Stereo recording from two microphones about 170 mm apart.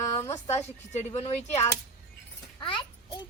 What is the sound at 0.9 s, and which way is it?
Speech, 40° left (ahead or behind).